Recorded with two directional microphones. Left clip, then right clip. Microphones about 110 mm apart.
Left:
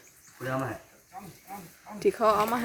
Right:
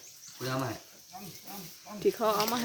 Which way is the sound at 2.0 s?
15° left (ahead or behind).